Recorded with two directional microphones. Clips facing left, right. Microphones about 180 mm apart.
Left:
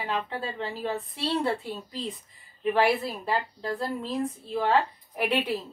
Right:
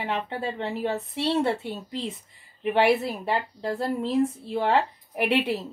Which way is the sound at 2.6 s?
25° right (ahead or behind).